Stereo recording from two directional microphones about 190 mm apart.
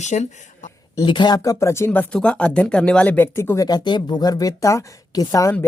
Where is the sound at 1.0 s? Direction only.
25° left (ahead or behind).